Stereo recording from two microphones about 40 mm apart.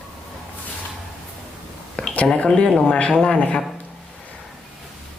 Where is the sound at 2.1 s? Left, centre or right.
Left.